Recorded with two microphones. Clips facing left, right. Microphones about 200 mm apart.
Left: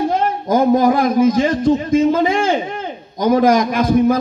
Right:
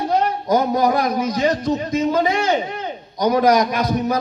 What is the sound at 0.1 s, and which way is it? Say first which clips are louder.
A man's voice: left 1 dB; 50° left (ahead or behind).